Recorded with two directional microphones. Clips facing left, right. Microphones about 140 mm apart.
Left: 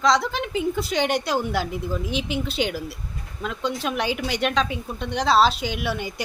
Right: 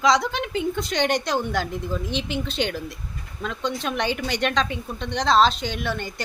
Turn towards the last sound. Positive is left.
turn(degrees=10)  # may be behind; listen again after turning